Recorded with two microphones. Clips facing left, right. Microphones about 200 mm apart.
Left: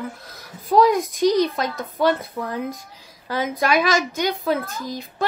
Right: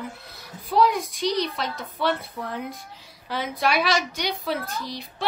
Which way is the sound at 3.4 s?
45° left (ahead or behind).